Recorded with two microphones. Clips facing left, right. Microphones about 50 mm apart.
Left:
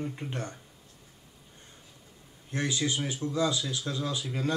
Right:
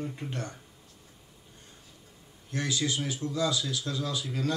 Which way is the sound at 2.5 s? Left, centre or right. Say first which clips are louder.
Even; left.